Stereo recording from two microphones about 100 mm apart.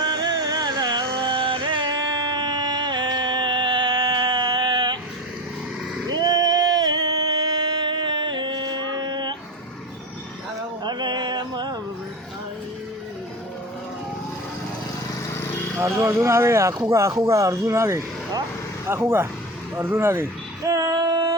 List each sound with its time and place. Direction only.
0.0 s music: 45° right (ahead or behind)
6.1 s a sound: 40° right (ahead or behind)
10.8 s music: 45° right (ahead or behind)
15.8 s speech: 25° right (ahead or behind)
20.7 s female singing: 35° right (ahead or behind)